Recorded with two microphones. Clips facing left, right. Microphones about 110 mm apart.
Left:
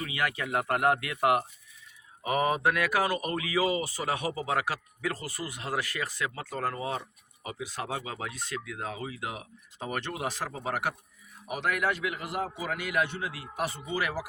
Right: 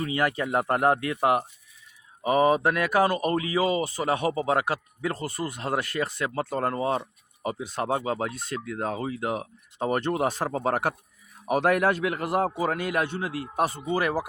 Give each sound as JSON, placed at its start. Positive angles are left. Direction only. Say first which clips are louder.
{"t": 0.0, "sound": "speech", "louder": "right 6 dB", "side_deg": -35}
{"t": 4.3, "sound": "a man's voice", "louder": "right 7 dB", "side_deg": -45}
{"t": 4.5, "sound": "a man's voice", "louder": "right 4 dB", "side_deg": -30}
{"t": 5.0, "sound": "a man's voice", "louder": "right 5 dB", "side_deg": -50}
{"t": 5.7, "sound": "a man's voice", "louder": "right 4 dB", "side_deg": -30}